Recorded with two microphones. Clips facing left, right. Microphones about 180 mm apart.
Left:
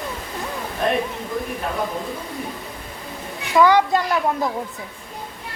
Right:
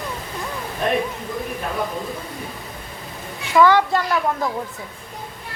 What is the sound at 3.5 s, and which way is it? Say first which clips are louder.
Speech: even; 15° left (ahead or behind).